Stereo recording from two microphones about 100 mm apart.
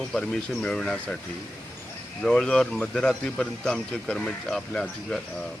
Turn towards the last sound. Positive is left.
turn(degrees=5)  # may be behind; listen again after turning